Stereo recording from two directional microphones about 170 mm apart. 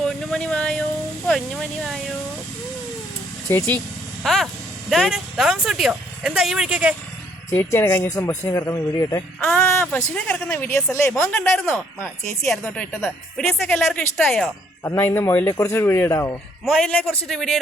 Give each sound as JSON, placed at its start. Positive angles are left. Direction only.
{"t": 0.0, "sound": "a sound", "side_deg": 5}
{"t": 1.8, "sound": "speech", "side_deg": 0}
{"t": 3.5, "sound": "speech", "side_deg": 15}
{"t": 4.2, "sound": "a woman's voice", "side_deg": 0}
{"t": 7.5, "sound": "a woman's voice", "side_deg": 15}
{"t": 14.8, "sound": "speech", "side_deg": 15}
{"t": 16.6, "sound": "a woman's voice", "side_deg": 5}